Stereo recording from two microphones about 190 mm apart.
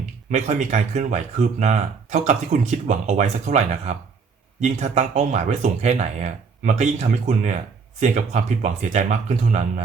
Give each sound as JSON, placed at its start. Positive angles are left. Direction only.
{"t": 0.0, "sound": "speech", "side_deg": -40}